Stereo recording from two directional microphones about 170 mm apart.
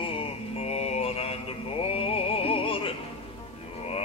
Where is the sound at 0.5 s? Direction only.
35° left (ahead or behind).